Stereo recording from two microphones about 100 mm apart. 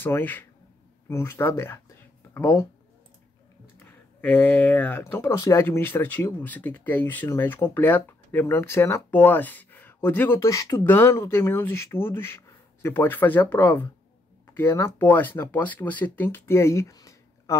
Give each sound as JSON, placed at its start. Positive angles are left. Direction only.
{"t": 0.0, "sound": "speech", "side_deg": 20}
{"t": 3.8, "sound": "speech", "side_deg": 15}